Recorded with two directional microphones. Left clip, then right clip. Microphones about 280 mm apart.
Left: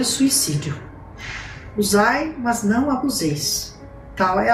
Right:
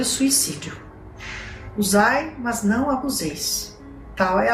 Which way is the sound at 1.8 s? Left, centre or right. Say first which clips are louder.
Left 1 dB; centre.